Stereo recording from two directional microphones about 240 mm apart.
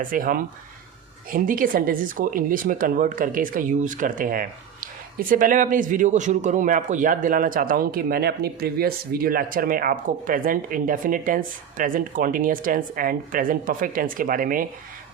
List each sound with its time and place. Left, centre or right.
0.0 s speech: right